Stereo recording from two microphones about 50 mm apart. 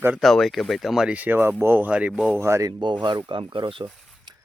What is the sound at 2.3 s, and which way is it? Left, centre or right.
Speech, right.